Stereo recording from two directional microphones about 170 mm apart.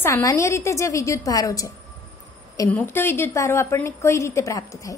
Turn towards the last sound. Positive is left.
turn(degrees=20)  # may be behind; listen again after turning